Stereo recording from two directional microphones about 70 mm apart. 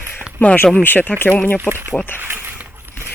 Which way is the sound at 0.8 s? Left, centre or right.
Left.